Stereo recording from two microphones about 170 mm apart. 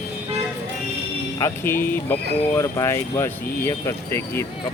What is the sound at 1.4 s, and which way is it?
Speech, 15° left (ahead or behind).